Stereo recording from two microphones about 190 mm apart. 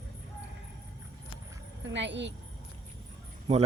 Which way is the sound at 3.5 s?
35° right (ahead or behind).